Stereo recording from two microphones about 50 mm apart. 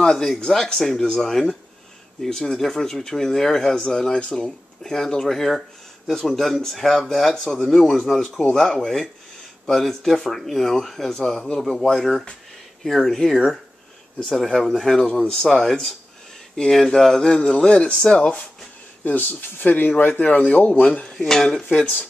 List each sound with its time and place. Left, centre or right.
0.0 s speech: centre
11.1 s speech: centre
15.0 s speech: centre
19.0 s speech: left
21.2 s speech: centre